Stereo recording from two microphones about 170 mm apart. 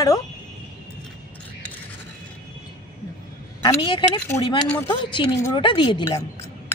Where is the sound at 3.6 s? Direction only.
25° left (ahead or behind).